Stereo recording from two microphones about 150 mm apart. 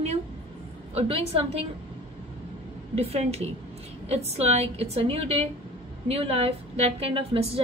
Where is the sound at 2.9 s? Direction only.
45° right (ahead or behind).